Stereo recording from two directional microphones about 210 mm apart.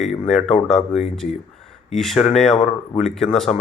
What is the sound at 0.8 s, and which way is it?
Speech, 30° left (ahead or behind).